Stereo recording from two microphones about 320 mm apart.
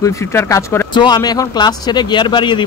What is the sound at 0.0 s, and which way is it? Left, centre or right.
Speech, centre.